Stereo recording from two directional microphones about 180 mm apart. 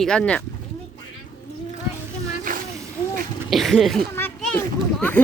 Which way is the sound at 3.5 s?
Centre (ahead or behind).